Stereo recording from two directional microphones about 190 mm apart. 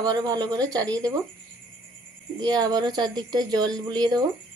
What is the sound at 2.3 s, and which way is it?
A woman's voice, 20° right (ahead or behind).